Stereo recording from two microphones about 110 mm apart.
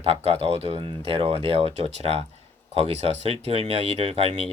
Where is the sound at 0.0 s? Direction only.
65° right (ahead or behind).